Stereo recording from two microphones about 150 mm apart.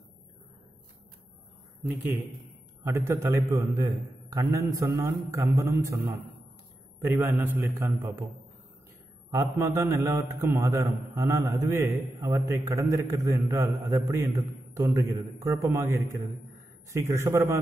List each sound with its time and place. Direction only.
2.8 s a man's voice: 20° right (ahead or behind)
9.3 s a man's voice: 20° right (ahead or behind)